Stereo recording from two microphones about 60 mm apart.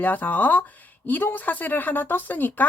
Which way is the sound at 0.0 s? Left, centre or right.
Left.